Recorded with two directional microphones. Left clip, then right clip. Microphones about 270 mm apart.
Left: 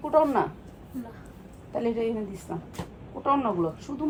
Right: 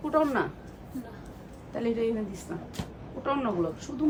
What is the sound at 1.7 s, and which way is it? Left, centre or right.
A woman's voice, centre.